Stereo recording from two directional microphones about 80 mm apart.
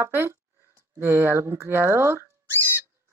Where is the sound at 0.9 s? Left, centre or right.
Right.